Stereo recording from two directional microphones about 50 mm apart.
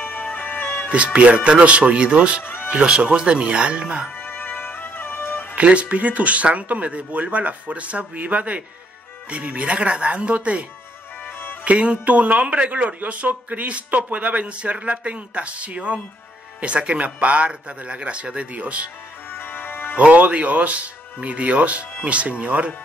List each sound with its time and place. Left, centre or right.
0.0 s music: left
0.9 s speech: right
2.4 s music: left
2.7 s speech: right
4.1 s music: left
5.6 s speech: right
11.2 s music: left
11.6 s speech: right
19.3 s music: left
20.1 s speech: right